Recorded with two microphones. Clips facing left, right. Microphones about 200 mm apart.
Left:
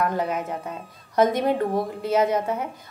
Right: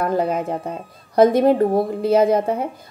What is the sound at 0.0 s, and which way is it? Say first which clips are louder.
A woman's voice: right 5 dB; 30° right (ahead or behind).